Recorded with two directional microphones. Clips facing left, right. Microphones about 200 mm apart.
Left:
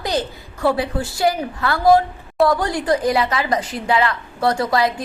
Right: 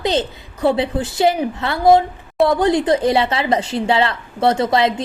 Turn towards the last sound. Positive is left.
turn(degrees=-25)  # may be behind; listen again after turning